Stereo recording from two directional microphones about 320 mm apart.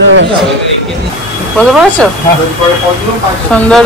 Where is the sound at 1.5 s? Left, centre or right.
Centre.